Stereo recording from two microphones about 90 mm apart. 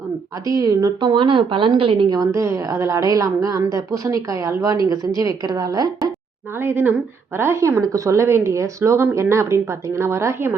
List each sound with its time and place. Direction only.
0.4 s a woman's voice: 45° right (ahead or behind)
1.1 s a woman's voice: 65° right (ahead or behind)
2.1 s a woman's voice: 40° right (ahead or behind)
6.6 s a woman's voice: 25° right (ahead or behind)